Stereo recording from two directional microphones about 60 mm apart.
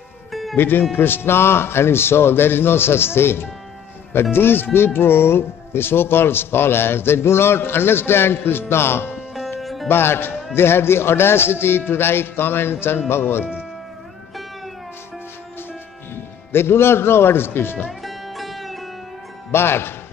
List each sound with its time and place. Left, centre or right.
0.3 s music: centre
0.6 s speech: left
9.6 s music: centre
9.8 s speech: left
16.5 s speech: left
18.0 s music: centre
19.5 s speech: left